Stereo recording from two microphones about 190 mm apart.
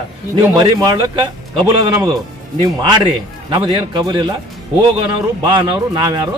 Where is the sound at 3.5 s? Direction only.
25° right (ahead or behind).